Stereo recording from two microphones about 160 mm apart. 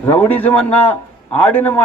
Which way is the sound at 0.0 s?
10° left (ahead or behind).